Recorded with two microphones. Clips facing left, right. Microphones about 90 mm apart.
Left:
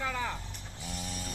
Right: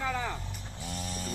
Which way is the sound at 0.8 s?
Centre (ahead or behind).